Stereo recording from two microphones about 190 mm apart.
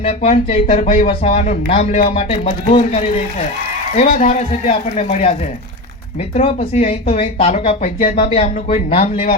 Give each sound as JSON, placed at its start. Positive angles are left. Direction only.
{"t": 0.0, "sound": "speech", "side_deg": 30}
{"t": 6.3, "sound": "speech", "side_deg": 35}
{"t": 8.2, "sound": "speech", "side_deg": 30}